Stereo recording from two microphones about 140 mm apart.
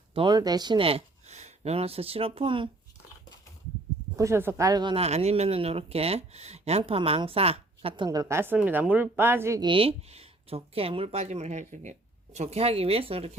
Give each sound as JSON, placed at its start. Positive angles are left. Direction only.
{"t": 0.1, "sound": "speech", "side_deg": -35}
{"t": 4.2, "sound": "speech", "side_deg": -20}
{"t": 4.9, "sound": "speech", "side_deg": -50}
{"t": 9.6, "sound": "speech", "side_deg": -35}